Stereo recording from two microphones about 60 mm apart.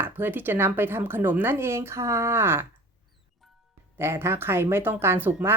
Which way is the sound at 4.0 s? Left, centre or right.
Right.